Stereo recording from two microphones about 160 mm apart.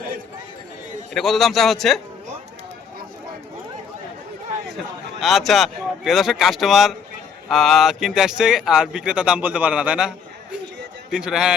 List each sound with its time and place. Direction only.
1.1 s speech: centre (ahead or behind)
5.2 s speech: centre (ahead or behind)